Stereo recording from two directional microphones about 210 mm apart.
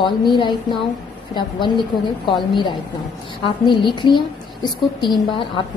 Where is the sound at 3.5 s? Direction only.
20° left (ahead or behind).